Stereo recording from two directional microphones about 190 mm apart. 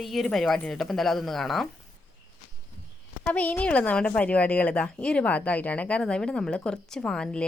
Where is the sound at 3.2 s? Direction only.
10° left (ahead or behind).